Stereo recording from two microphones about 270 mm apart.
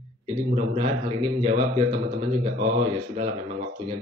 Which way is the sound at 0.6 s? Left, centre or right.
Right.